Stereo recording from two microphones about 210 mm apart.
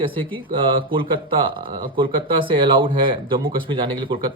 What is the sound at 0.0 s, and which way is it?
A man's voice, 25° right (ahead or behind).